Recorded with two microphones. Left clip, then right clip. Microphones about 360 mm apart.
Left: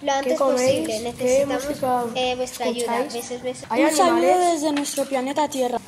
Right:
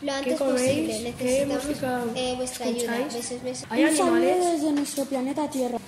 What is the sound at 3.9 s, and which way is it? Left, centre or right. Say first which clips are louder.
Speech: left 6 dB; left.